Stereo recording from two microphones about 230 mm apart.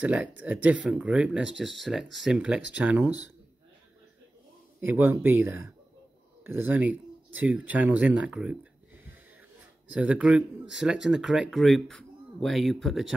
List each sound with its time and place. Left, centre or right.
0.0 s speech: centre
4.7 s speech: centre